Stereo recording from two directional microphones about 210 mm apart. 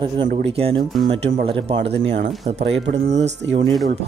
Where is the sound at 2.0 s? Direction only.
60° right (ahead or behind).